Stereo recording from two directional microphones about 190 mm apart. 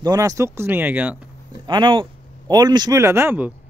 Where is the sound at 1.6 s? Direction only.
25° right (ahead or behind).